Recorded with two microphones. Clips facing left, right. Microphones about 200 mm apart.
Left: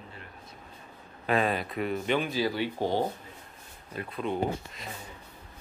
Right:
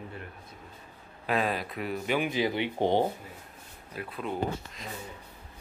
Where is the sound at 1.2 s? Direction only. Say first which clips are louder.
Left 2 dB; centre (ahead or behind).